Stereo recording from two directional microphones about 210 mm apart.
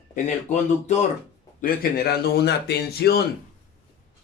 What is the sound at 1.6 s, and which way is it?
Speech, 45° left (ahead or behind).